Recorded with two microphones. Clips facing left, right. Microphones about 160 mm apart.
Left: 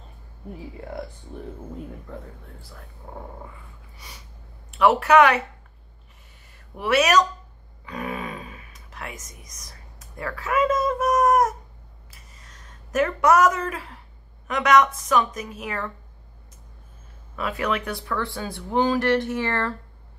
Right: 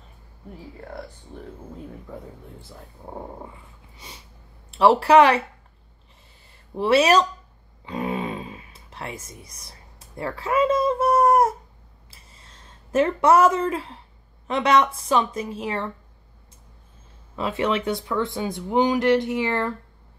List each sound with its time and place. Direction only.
2.1 s speech: 10° right (ahead or behind)
2.6 s speech: 20° right (ahead or behind)
6.7 s speech: 30° right (ahead or behind)
7.8 s a sound: 25° right (ahead or behind)
14.5 s speech: 30° right (ahead or behind)
17.4 s speech: 25° right (ahead or behind)